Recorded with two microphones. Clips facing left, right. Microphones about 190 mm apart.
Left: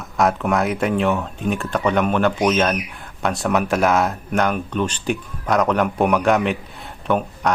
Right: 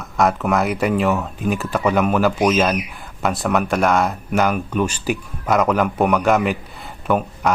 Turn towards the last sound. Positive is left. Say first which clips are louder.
# right 1 dB
turn(degrees=-5)  # may be behind; listen again after turning